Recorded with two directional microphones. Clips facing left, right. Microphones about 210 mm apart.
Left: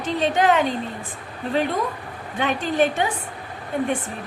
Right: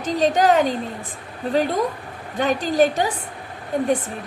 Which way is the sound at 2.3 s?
40° right (ahead or behind).